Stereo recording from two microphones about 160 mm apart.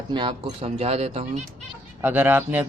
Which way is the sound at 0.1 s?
30° right (ahead or behind).